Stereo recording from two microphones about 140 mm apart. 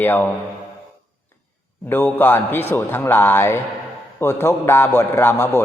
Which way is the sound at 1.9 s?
15° left (ahead or behind).